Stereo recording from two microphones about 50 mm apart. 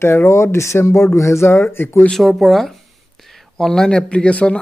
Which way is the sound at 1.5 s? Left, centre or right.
Left.